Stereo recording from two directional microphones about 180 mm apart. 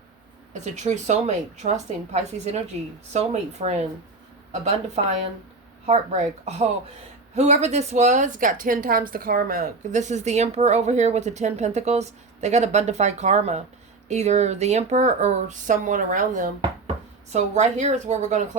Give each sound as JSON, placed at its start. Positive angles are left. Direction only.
{"t": 0.5, "sound": "a woman's voice", "side_deg": -40}
{"t": 5.0, "sound": "a woman's voice", "side_deg": -40}